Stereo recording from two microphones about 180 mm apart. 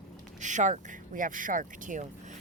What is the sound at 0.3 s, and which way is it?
Speech, 45° right (ahead or behind).